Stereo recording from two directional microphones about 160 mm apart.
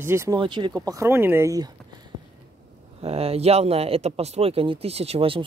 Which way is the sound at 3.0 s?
40° right (ahead or behind).